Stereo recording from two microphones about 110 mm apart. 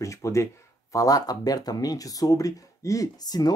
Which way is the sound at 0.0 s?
25° left (ahead or behind).